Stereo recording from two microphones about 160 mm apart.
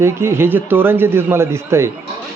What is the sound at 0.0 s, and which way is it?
Speech, 15° right (ahead or behind).